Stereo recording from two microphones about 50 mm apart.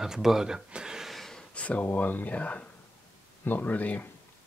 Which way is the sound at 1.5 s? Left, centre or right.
Left.